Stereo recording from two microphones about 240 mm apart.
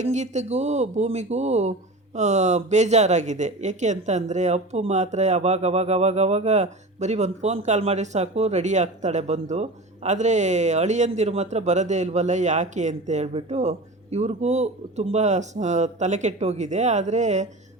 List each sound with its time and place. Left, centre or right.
0.0 s speech: right